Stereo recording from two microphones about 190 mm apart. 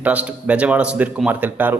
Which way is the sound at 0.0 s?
5° right (ahead or behind).